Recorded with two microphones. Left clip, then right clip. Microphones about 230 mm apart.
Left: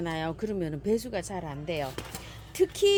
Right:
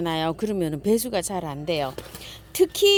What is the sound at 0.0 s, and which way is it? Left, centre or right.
A woman's voice, right.